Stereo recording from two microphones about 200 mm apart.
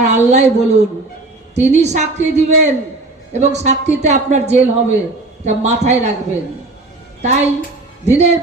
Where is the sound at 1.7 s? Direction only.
35° right (ahead or behind).